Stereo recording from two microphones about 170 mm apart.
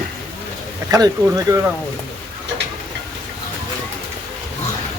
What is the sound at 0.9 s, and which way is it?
Speech, 20° right (ahead or behind).